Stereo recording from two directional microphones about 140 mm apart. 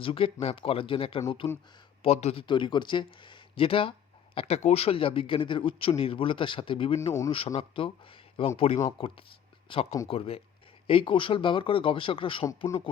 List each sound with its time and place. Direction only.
0.0 s speech: 40° left (ahead or behind)
1.5 s a man's voice: 20° left (ahead or behind)
2.0 s speech: 45° left (ahead or behind)
2.5 s speech: 35° left (ahead or behind)
7.0 s a man's voice: 20° left (ahead or behind)
7.3 s speech: 40° left (ahead or behind)
12.5 s a man's voice: 20° left (ahead or behind)